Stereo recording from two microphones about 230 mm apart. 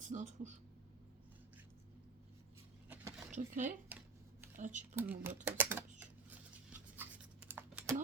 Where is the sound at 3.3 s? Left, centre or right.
Right.